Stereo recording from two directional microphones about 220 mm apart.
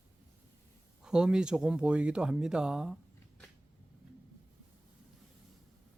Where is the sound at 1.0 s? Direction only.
5° right (ahead or behind).